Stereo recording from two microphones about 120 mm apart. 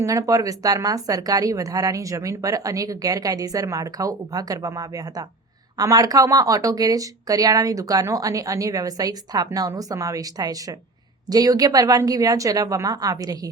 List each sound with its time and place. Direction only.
0.0 s a woman's voice: 30° right (ahead or behind)